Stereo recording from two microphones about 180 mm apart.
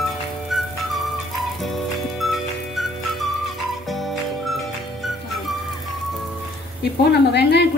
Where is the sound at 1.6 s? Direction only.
Centre (ahead or behind).